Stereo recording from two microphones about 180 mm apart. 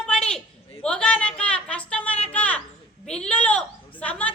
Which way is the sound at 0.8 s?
5° left (ahead or behind).